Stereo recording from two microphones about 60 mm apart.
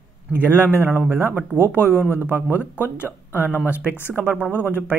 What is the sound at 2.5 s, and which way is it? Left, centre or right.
Speech, right.